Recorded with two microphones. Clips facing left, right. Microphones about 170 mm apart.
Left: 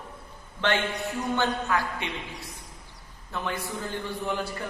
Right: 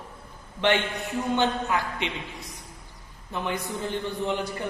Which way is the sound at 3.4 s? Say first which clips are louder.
Right 2 dB; 20° right (ahead or behind).